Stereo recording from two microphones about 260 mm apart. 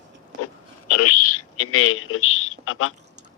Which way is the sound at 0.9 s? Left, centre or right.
Left.